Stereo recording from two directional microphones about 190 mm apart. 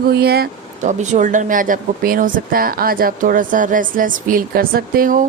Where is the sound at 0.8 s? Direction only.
40° right (ahead or behind).